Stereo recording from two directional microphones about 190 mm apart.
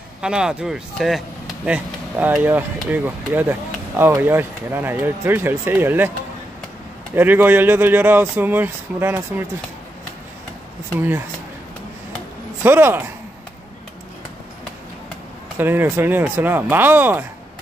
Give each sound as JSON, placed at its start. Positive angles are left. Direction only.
{"t": 0.2, "sound": "speech", "side_deg": -5}
{"t": 7.2, "sound": "speech", "side_deg": -10}
{"t": 11.0, "sound": "speech", "side_deg": -10}
{"t": 12.6, "sound": "speech", "side_deg": -10}
{"t": 15.5, "sound": "speech", "side_deg": -10}